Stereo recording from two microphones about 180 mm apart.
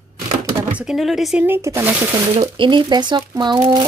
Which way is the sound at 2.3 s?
25° right (ahead or behind).